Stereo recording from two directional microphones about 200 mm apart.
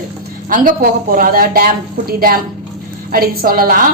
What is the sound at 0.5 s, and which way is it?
A woman's voice, 45° right (ahead or behind).